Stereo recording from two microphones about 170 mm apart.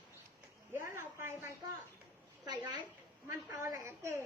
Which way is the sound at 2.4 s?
25° right (ahead or behind).